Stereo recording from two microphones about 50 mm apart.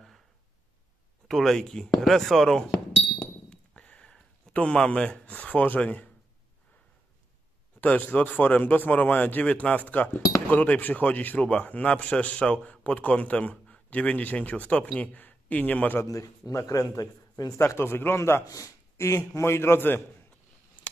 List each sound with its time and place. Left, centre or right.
1.2 s speech: centre
3.4 s a sound: left
7.8 s a man's voice: left
16.2 s speech: left
17.6 s a man's voice: left